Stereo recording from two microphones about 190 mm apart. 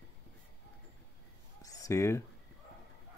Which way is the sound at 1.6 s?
20° left (ahead or behind).